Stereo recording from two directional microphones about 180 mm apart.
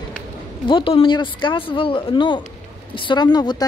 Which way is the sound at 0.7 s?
30° left (ahead or behind).